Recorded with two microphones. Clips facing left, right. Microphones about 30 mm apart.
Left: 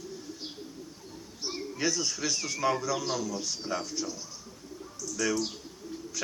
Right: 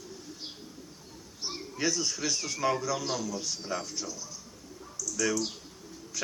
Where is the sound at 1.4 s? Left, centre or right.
Centre.